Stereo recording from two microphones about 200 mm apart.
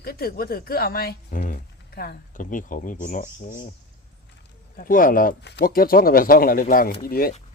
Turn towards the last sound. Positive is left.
turn(degrees=45)  # may be behind; listen again after turning